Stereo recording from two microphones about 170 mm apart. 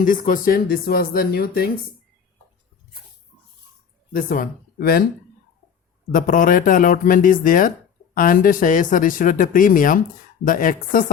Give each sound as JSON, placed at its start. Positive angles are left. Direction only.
{"t": 0.0, "sound": "speech", "side_deg": 55}
{"t": 4.1, "sound": "speech", "side_deg": 55}
{"t": 6.1, "sound": "speech", "side_deg": 50}